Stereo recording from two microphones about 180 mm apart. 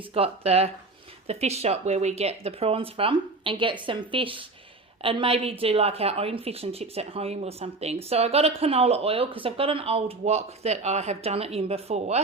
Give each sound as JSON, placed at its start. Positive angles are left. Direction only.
{"t": 0.1, "sound": "a woman's voice", "side_deg": -35}